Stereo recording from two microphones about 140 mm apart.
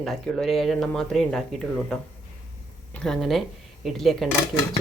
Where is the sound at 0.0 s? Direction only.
Centre (ahead or behind).